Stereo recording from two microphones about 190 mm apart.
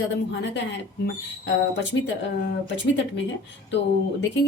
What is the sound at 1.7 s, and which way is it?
Speech, 70° left (ahead or behind).